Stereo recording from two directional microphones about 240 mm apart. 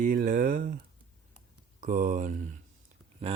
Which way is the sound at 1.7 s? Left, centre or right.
Right.